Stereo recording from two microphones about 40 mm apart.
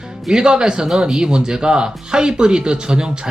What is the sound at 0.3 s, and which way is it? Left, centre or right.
Speech, centre.